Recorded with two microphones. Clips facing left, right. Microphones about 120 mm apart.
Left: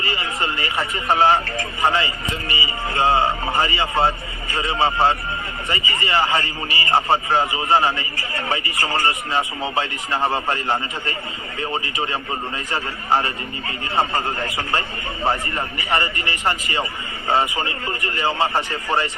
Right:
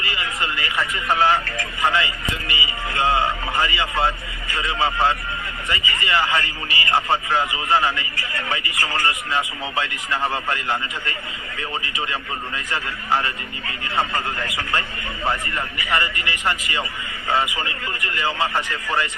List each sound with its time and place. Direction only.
0.0 s a man's voice: 30° left (ahead or behind)